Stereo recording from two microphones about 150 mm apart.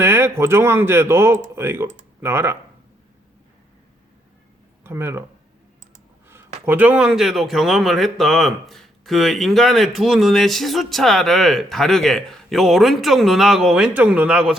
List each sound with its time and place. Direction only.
0.0 s speech: 15° right (ahead or behind)
4.8 s speech: 15° right (ahead or behind)
6.7 s speech: 10° right (ahead or behind)